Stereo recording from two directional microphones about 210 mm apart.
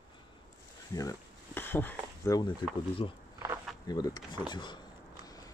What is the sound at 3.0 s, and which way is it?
Speech, 25° left (ahead or behind).